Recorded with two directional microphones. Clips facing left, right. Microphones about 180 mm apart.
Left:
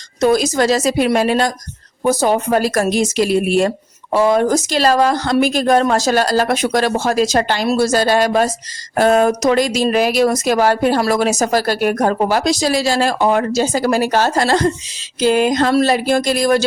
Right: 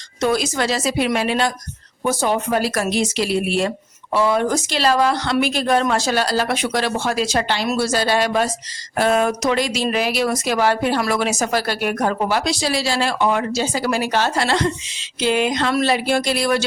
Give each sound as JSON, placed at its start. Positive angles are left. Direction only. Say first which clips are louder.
{"t": 0.2, "sound": "speech", "louder": "left 6 dB", "side_deg": 40}